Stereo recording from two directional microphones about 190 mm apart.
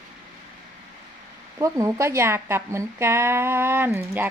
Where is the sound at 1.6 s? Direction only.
15° right (ahead or behind).